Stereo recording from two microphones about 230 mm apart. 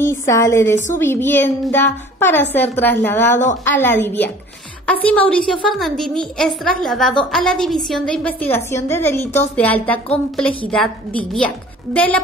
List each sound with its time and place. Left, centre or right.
0.0 s a woman's voice: centre
11.9 s a woman's voice: centre